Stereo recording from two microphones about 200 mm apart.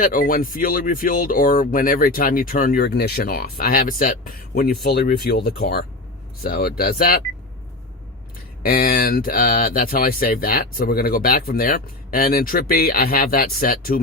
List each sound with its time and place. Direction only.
0.0 s speech: 45° left (ahead or behind)
8.6 s speech: 50° left (ahead or behind)